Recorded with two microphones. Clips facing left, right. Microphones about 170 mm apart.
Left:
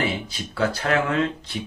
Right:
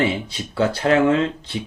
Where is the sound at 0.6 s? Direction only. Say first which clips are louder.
Right 6 dB; 30° right (ahead or behind).